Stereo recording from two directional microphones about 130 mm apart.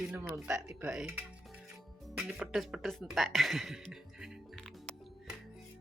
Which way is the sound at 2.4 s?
Centre (ahead or behind).